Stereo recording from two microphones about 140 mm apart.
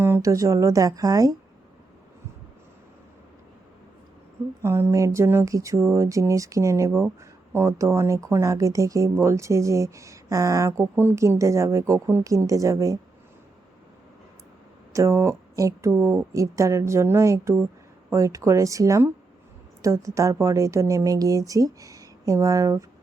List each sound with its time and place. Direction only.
0.0 s speech: 20° right (ahead or behind)
4.6 s speech: 20° right (ahead or behind)
14.9 s a woman's voice: 20° right (ahead or behind)